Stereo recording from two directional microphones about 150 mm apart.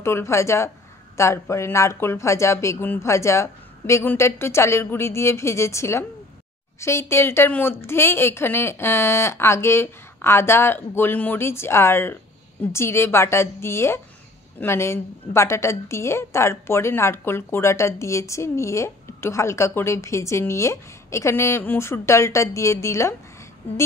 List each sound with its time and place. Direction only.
0.0 s a woman's voice: 20° left (ahead or behind)